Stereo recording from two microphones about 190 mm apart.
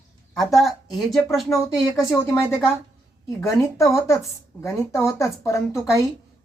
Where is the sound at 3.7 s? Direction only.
15° left (ahead or behind).